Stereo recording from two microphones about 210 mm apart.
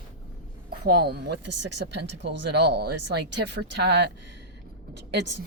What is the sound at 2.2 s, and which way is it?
Speech, 55° right (ahead or behind).